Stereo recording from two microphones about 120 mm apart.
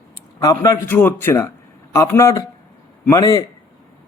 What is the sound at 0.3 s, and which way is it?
A man's voice, 25° left (ahead or behind).